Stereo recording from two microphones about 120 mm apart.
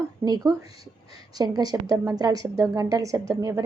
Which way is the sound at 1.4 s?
35° right (ahead or behind).